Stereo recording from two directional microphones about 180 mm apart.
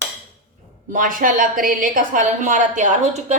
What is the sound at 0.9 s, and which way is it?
A woman's voice, 50° right (ahead or behind).